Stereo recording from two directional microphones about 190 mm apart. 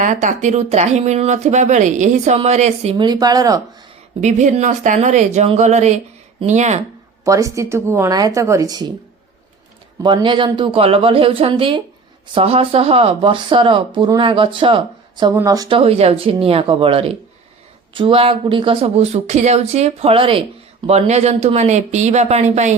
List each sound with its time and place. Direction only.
0.0 s speech: 40° right (ahead or behind)
3.1 s speech: 20° right (ahead or behind)
4.2 s speech: 40° right (ahead or behind)
7.3 s speech: 15° right (ahead or behind)
10.0 s speech: 25° right (ahead or behind)